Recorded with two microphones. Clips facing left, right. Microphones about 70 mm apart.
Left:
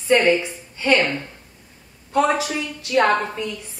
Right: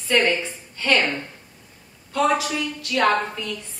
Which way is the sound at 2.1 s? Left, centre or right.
Left.